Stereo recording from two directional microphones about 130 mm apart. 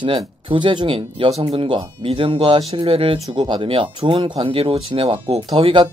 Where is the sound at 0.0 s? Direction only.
40° right (ahead or behind).